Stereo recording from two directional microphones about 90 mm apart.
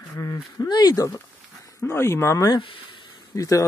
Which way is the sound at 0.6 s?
50° left (ahead or behind).